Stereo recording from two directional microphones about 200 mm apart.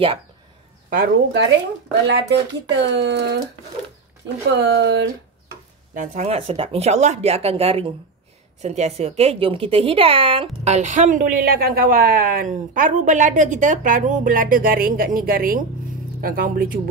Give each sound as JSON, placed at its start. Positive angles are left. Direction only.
{"t": 0.8, "sound": "speech", "side_deg": -50}
{"t": 4.5, "sound": "speech", "side_deg": -60}
{"t": 5.9, "sound": "speech", "side_deg": -35}